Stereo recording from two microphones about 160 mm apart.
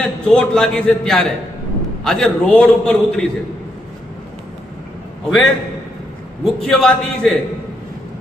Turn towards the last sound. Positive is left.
turn(degrees=0)  # may be behind; listen again after turning